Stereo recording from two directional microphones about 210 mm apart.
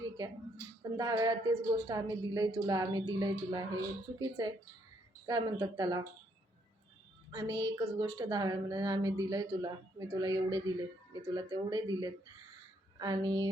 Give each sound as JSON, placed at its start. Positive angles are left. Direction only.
{"t": 0.8, "sound": "a woman's voice", "side_deg": -15}
{"t": 7.3, "sound": "a woman's voice", "side_deg": -20}